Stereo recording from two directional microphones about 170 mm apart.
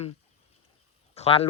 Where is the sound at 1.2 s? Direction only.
35° left (ahead or behind).